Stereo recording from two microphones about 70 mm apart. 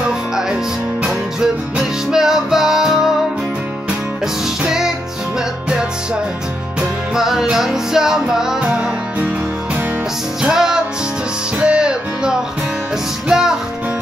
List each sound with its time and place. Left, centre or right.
1.0 s music: centre
4.6 s music: centre
7.2 s music: centre
10.4 s music: centre